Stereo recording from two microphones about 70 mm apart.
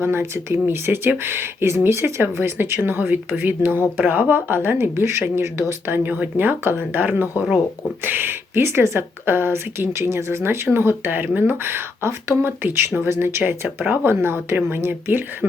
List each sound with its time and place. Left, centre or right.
0.0 s speech: right